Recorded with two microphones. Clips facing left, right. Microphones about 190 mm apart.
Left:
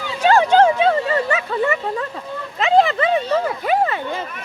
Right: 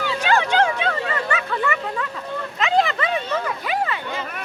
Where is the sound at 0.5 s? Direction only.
35° left (ahead or behind).